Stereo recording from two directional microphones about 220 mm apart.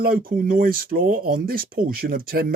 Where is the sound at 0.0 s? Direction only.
40° right (ahead or behind).